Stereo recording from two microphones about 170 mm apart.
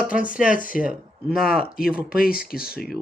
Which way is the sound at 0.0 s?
5° right (ahead or behind).